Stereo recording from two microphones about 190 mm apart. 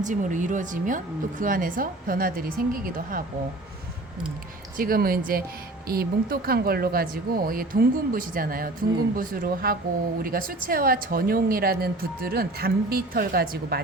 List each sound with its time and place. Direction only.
0.0 s speech: 40° right (ahead or behind)
4.8 s speech: 50° right (ahead or behind)